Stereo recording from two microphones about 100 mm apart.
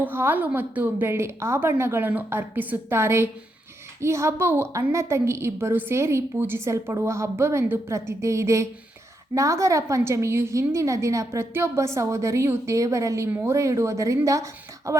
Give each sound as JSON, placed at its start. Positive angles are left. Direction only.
{"t": 0.0, "sound": "a woman's voice", "side_deg": -20}